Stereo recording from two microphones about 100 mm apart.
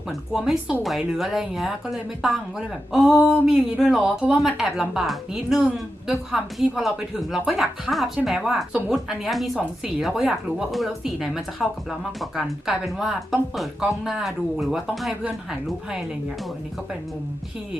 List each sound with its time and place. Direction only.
0.1 s a woman's voice: 5° right (ahead or behind)